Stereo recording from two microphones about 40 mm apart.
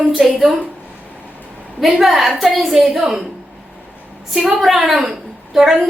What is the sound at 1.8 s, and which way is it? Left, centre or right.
A woman's voice, centre.